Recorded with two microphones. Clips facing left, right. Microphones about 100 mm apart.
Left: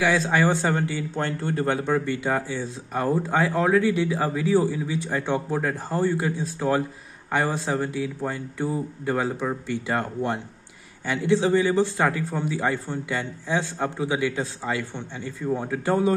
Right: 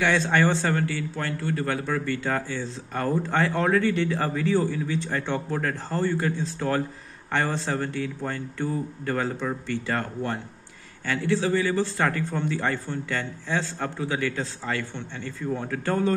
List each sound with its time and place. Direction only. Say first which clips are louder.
0.0 s speech: left 1 dB; 5° left (ahead or behind)
0.6 s a man's voice: left 1 dB; 20° left (ahead or behind)